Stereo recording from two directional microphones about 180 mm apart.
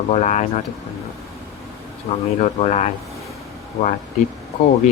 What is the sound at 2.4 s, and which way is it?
Speech, 40° left (ahead or behind).